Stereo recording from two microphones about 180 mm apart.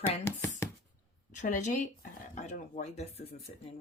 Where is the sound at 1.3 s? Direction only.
45° left (ahead or behind).